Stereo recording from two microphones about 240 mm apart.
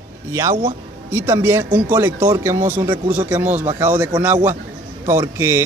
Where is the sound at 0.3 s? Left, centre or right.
Centre.